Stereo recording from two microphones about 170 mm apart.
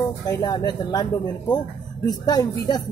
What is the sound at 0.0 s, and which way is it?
Speech, 20° left (ahead or behind).